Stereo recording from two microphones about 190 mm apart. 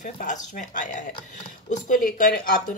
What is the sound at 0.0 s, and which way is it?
Speech, 40° left (ahead or behind).